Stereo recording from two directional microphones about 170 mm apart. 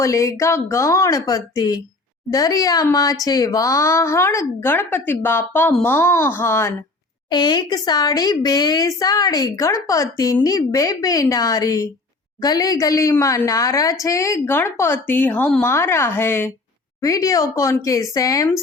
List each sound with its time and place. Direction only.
0.0 s speech: 20° left (ahead or behind)
7.3 s speech: 25° left (ahead or behind)